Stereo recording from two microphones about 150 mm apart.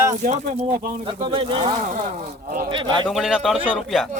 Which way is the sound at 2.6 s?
30° right (ahead or behind).